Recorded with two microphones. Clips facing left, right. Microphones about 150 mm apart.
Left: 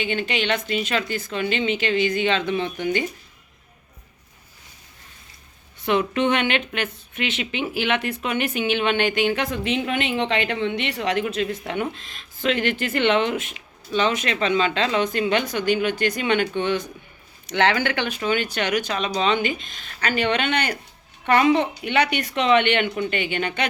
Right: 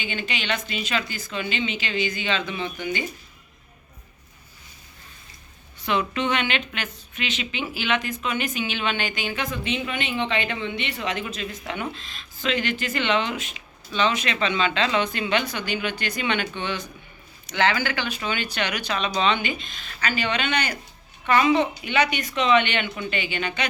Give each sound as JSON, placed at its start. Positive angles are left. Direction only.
{"t": 0.0, "sound": "a woman's voice", "side_deg": 55}
{"t": 5.8, "sound": "a woman's voice", "side_deg": 50}
{"t": 17.5, "sound": "a woman's voice", "side_deg": 60}